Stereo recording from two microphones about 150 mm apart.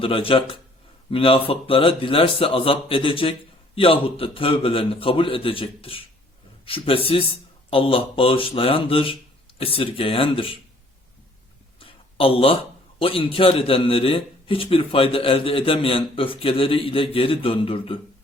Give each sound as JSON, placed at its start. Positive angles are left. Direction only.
{"t": 0.0, "sound": "a man's voice", "side_deg": 35}
{"t": 11.8, "sound": "a sound", "side_deg": 35}
{"t": 13.0, "sound": "a man's voice", "side_deg": 35}